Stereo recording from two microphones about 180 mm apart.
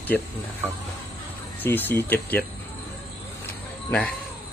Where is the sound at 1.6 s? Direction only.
10° left (ahead or behind).